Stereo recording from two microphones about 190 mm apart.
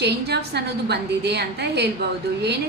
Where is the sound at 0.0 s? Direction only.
60° right (ahead or behind).